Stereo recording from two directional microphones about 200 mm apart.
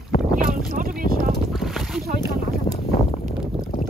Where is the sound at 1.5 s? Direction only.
Centre (ahead or behind).